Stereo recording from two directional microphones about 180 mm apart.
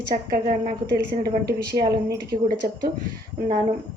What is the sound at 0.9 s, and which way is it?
Speech, 60° right (ahead or behind).